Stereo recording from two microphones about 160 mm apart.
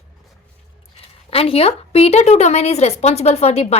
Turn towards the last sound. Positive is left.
turn(degrees=40)  # may be behind; listen again after turning